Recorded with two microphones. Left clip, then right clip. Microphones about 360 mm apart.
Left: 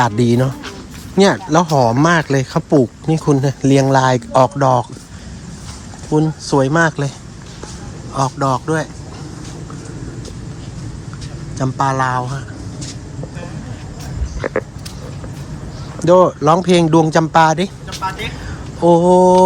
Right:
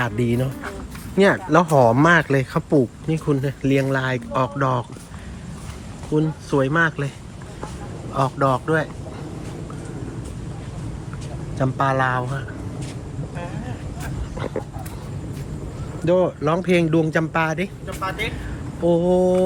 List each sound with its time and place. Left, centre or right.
0.0 s speech: centre
6.1 s speech: centre
8.1 s speech: centre
11.5 s speech: centre
16.0 s speech: centre
18.0 s speech: centre
18.8 s speech: centre